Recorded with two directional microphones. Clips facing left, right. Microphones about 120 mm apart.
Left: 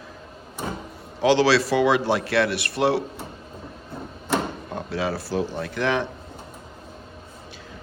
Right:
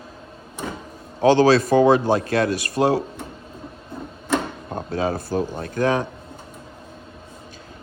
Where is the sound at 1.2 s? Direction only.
45° right (ahead or behind).